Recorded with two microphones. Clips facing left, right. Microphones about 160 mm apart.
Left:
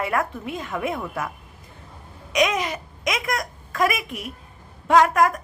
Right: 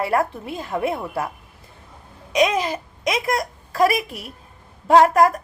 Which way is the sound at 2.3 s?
30° right (ahead or behind).